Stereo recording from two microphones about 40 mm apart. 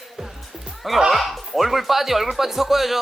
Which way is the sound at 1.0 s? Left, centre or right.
Centre.